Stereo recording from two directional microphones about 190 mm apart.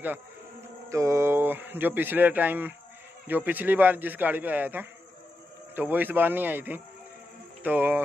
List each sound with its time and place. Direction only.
0.8 s speech: 15° right (ahead or behind)